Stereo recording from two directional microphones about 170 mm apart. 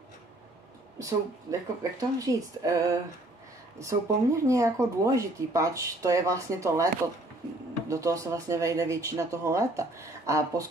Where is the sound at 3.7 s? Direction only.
15° right (ahead or behind).